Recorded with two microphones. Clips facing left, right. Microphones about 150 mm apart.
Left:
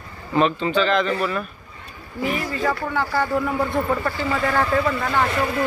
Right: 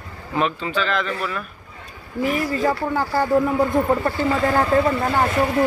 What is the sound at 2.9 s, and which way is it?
Speech, 40° right (ahead or behind).